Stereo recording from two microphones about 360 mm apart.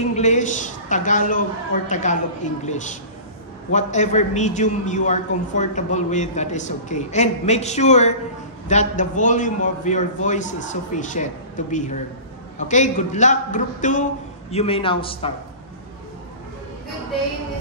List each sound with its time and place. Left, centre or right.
0.1 s a man's voice: centre